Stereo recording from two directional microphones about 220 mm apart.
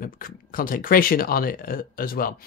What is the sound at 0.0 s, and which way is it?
Speech, 40° left (ahead or behind).